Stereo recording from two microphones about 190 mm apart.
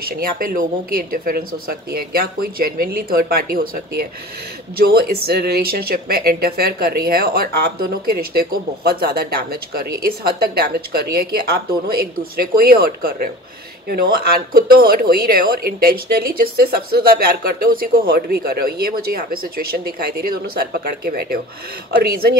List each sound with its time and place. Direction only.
0.1 s speech: 50° right (ahead or behind)